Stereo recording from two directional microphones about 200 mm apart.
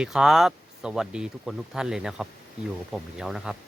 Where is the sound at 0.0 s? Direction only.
5° right (ahead or behind).